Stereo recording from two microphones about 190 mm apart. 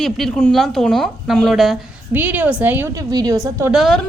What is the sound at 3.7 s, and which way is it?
Speech, centre (ahead or behind).